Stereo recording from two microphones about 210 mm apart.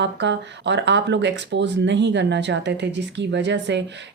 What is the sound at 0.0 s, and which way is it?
Speech, 55° right (ahead or behind).